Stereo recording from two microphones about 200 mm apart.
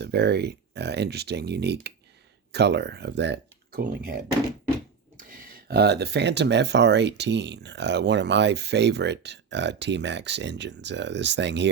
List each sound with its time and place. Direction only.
0.0 s speech: 55° right (ahead or behind)
5.1 s speech: 45° right (ahead or behind)